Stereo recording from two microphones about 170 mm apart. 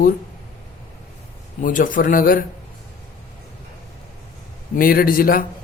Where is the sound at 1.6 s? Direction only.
50° left (ahead or behind).